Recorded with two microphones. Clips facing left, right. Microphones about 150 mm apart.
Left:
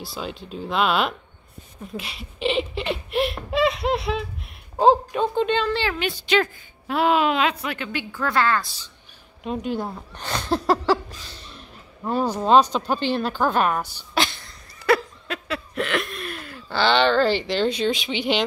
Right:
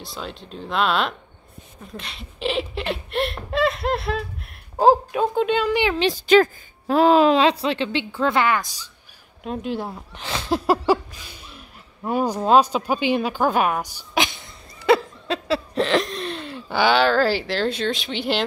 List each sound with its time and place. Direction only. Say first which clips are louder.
0.0 s speech: left 2 dB; centre (ahead or behind); by 5.9 s 15° right (ahead or behind)
6.2 s a woman's voice: right 7 dB; 45° right (ahead or behind); by 8.6 s 20° right (ahead or behind)
9.4 s speech: left 1 dB; centre (ahead or behind); by 15.0 s 20° right (ahead or behind)
15.2 s a sound: right 6 dB; 30° right (ahead or behind)
16.6 s speech: right 1 dB; 10° right (ahead or behind)